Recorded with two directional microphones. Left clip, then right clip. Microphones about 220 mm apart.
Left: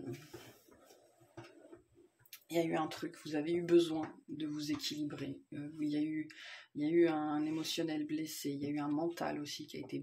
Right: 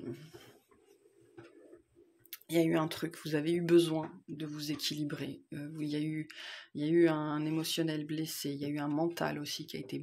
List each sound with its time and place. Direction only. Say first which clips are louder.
2.3 s speech: right 5 dB; 35° right (ahead or behind)